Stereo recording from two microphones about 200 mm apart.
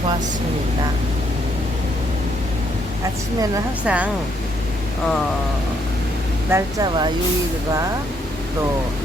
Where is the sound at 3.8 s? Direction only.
5° right (ahead or behind).